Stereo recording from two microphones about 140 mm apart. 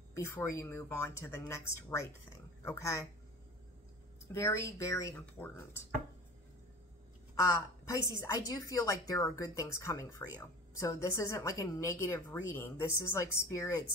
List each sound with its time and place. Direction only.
0.1 s a woman's voice: 20° left (ahead or behind)
4.3 s a woman's voice: 20° left (ahead or behind)
7.9 s a woman's voice: 25° left (ahead or behind)